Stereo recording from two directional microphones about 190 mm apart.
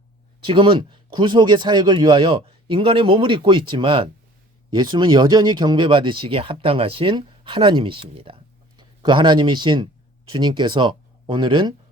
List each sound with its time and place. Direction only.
0.4 s speech: 25° right (ahead or behind)